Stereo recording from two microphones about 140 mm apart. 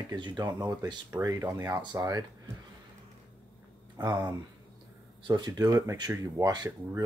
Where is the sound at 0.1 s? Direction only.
30° right (ahead or behind).